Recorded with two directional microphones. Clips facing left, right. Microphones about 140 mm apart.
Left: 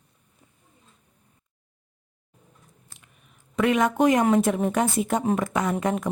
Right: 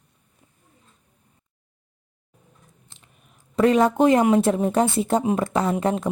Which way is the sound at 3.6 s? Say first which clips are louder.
Right 4 dB; 35° right (ahead or behind).